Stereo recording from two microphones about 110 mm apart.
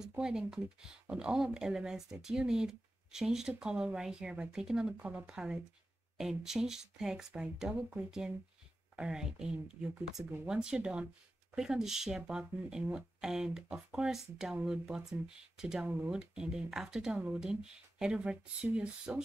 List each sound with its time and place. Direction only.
0.1 s speech: 5° right (ahead or behind)
15.9 s speech: 15° right (ahead or behind)